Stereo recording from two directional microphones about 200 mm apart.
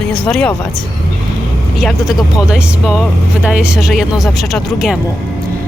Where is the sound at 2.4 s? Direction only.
5° right (ahead or behind).